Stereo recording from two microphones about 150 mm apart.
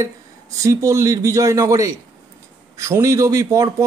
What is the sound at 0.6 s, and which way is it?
Speech, 20° right (ahead or behind).